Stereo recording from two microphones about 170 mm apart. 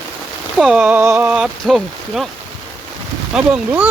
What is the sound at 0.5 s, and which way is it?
Speech, 5° right (ahead or behind).